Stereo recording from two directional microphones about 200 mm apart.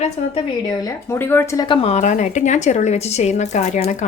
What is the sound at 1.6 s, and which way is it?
A woman's voice, 25° left (ahead or behind).